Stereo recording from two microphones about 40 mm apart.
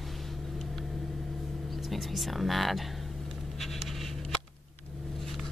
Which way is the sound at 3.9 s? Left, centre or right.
Centre.